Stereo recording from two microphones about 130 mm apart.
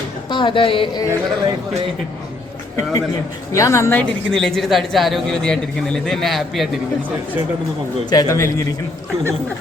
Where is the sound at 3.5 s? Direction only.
25° left (ahead or behind).